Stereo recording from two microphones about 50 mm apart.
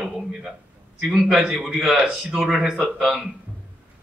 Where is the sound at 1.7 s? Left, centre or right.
Right.